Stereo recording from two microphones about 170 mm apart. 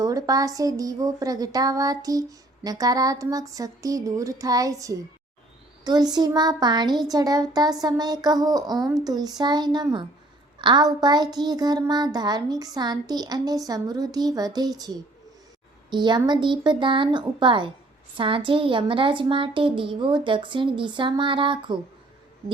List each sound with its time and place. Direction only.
0.0 s speech: 20° right (ahead or behind)